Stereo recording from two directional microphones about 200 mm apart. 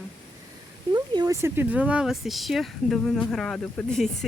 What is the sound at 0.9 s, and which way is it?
Speech, 20° right (ahead or behind).